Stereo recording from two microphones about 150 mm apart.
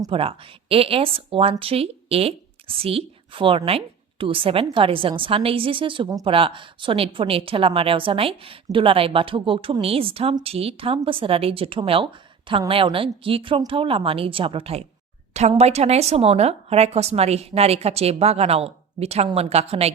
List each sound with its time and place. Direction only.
0.1 s a woman's voice: 40° right (ahead or behind)